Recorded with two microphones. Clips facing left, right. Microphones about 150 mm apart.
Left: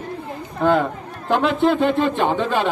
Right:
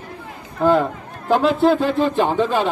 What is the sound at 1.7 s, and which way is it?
Speech, 40° right (ahead or behind).